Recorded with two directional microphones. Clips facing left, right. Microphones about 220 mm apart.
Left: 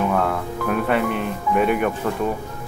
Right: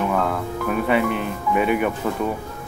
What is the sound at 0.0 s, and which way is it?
Speech, centre (ahead or behind).